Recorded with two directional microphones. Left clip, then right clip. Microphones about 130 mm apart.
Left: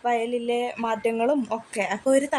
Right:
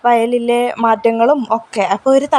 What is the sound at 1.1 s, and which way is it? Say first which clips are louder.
Speech: right 11 dB; 30° right (ahead or behind).